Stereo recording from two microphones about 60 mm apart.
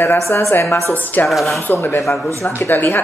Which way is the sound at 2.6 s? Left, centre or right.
Left.